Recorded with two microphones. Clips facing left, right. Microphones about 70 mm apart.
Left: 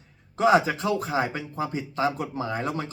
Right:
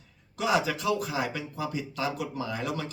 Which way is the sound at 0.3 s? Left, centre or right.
Left.